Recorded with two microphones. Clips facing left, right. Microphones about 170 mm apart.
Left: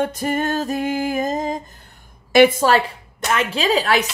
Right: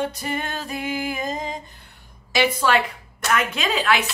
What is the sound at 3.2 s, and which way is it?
Music, 30° left (ahead or behind).